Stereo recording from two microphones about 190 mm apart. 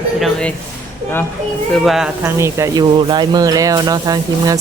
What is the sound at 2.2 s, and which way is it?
Speech, 15° right (ahead or behind).